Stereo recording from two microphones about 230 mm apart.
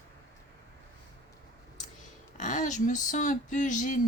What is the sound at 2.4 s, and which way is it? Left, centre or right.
Speech, left.